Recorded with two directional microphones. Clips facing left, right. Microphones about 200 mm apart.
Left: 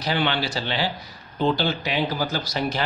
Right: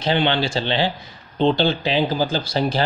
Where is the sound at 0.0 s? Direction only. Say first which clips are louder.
Right 5 dB; 25° right (ahead or behind).